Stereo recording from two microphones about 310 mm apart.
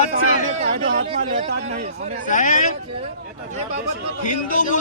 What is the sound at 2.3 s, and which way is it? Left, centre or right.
Speech, left.